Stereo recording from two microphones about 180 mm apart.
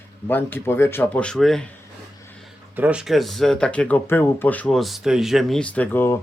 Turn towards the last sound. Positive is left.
turn(degrees=10)  # may be behind; listen again after turning